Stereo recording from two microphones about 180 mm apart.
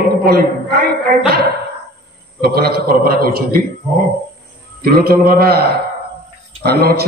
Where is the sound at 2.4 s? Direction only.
60° right (ahead or behind).